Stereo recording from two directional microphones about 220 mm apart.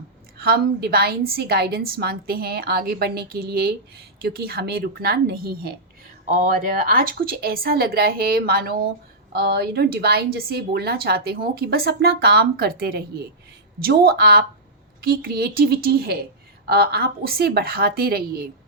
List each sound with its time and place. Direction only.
0.3 s a woman's voice: 45° right (ahead or behind)
6.2 s a woman's voice: 35° right (ahead or behind)